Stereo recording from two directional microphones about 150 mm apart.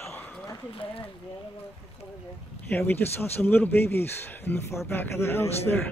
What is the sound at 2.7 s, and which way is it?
Speech, 15° left (ahead or behind).